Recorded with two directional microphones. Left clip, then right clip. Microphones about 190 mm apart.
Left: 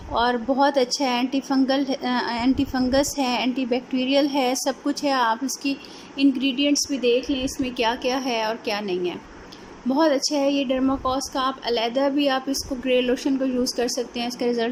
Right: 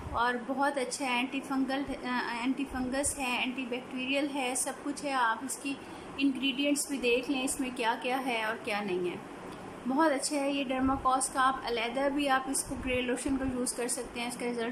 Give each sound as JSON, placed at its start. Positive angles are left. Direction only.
{"t": 0.1, "sound": "a woman's voice", "side_deg": 30}